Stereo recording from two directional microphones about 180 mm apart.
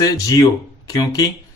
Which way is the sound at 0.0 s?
20° left (ahead or behind).